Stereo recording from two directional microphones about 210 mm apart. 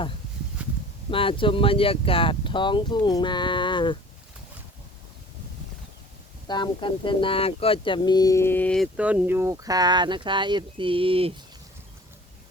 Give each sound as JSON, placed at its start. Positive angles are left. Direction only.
{"t": 1.1, "sound": "speech", "side_deg": 25}
{"t": 6.5, "sound": "speech", "side_deg": 20}